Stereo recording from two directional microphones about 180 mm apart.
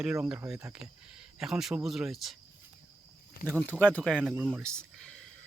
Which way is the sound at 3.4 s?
55° left (ahead or behind).